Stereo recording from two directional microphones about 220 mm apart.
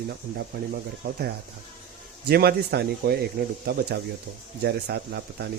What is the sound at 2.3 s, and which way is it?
Speech, 45° right (ahead or behind).